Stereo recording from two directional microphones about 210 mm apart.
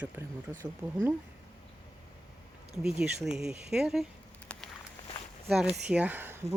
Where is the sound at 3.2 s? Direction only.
5° right (ahead or behind).